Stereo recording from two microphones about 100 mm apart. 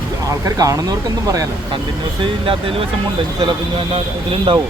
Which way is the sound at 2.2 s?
60° right (ahead or behind).